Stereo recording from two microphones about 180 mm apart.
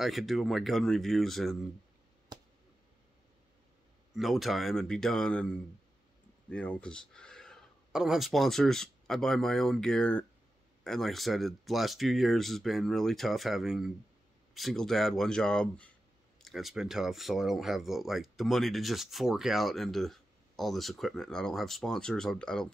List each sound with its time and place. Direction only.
0.0 s speech: centre (ahead or behind)
2.3 s a sound: 25° right (ahead or behind)
4.1 s speech: centre (ahead or behind)